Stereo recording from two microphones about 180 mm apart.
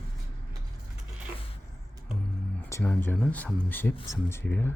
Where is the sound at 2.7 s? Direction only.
15° left (ahead or behind).